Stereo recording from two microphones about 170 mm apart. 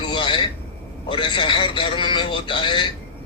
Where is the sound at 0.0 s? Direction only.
30° left (ahead or behind).